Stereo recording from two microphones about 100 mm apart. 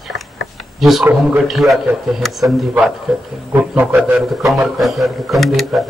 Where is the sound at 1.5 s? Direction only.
Centre (ahead or behind).